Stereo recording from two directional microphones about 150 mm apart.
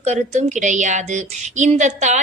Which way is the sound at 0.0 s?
50° right (ahead or behind).